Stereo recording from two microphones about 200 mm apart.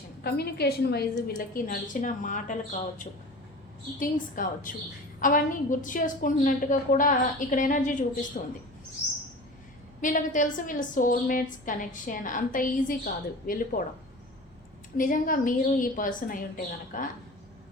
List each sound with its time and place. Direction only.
0.2 s a woman's voice: 55° left (ahead or behind)
4.0 s a woman's voice: 45° left (ahead or behind)
10.0 s a woman's voice: 40° left (ahead or behind)
14.9 s a woman's voice: 45° left (ahead or behind)